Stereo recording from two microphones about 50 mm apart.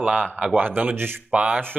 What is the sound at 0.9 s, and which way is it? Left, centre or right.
Speech, right.